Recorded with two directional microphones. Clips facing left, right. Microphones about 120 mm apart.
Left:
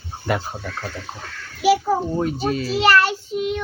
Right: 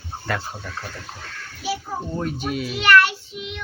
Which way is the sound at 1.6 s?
75° left (ahead or behind).